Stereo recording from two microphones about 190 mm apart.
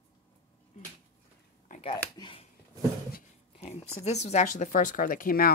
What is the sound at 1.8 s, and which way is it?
Speech, 25° left (ahead or behind).